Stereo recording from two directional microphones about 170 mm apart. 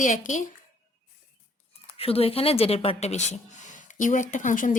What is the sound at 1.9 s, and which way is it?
Speech, 35° left (ahead or behind).